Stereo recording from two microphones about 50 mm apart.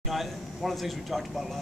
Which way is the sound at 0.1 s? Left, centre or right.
Centre.